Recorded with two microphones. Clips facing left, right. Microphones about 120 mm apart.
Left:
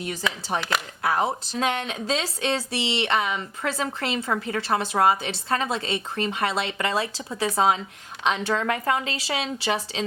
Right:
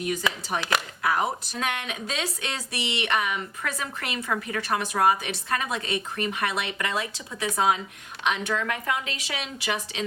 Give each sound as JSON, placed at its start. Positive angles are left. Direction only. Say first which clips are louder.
{"t": 0.0, "sound": "a woman's voice", "louder": "right 1 dB", "side_deg": 30}